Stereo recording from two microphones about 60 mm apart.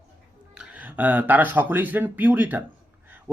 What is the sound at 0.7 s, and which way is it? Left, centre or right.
Speech, right.